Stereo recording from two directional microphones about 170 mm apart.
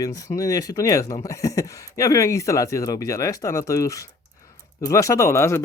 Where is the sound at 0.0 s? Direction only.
20° left (ahead or behind).